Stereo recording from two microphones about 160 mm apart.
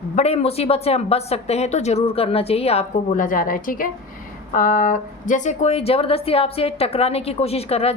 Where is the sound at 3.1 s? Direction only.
60° left (ahead or behind).